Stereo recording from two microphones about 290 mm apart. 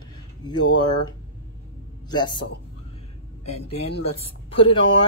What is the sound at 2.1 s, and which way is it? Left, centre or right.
Speech, centre.